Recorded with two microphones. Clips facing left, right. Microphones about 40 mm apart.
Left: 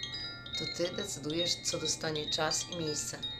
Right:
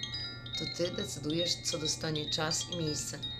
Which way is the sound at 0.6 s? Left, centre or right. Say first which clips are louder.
Even; centre.